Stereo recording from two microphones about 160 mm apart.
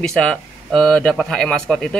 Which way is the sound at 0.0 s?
5° left (ahead or behind).